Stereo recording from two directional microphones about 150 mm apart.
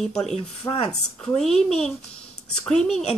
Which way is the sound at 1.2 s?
Centre (ahead or behind).